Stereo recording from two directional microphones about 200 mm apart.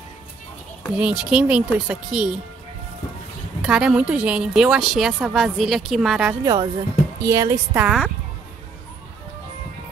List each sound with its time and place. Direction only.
0.9 s a woman's voice: 5° right (ahead or behind)
3.6 s a woman's voice: 5° right (ahead or behind)
6.4 s a woman's voice: 20° right (ahead or behind)